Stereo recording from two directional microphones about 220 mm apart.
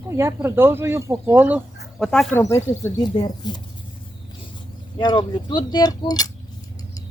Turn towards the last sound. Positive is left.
turn(degrees=15)  # may be behind; listen again after turning